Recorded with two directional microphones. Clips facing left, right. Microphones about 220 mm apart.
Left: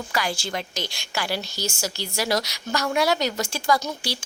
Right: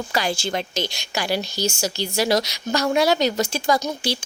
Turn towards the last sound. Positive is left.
turn(degrees=-20)  # may be behind; listen again after turning